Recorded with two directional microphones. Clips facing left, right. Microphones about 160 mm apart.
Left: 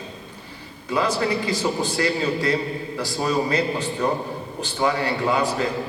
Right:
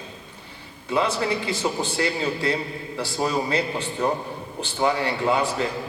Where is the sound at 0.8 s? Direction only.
25° right (ahead or behind).